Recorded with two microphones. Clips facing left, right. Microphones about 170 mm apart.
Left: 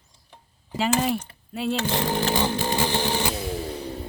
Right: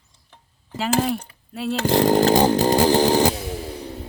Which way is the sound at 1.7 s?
40° right (ahead or behind).